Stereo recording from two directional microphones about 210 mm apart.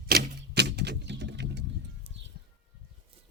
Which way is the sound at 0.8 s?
55° right (ahead or behind).